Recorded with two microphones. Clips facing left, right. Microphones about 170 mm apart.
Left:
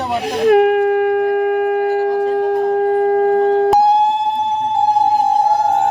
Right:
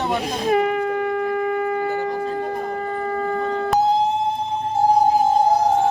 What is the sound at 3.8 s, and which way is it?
Emergency vehicle, 75° left (ahead or behind).